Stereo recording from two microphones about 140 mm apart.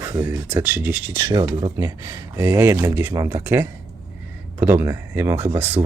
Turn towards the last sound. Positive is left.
turn(degrees=-15)  # may be behind; listen again after turning